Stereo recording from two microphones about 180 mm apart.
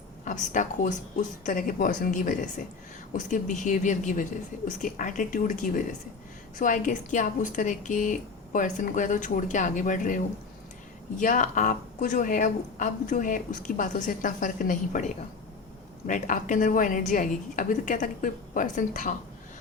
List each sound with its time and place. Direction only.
0.3 s a woman's voice: 45° left (ahead or behind)
11.2 s a woman's voice: 45° left (ahead or behind)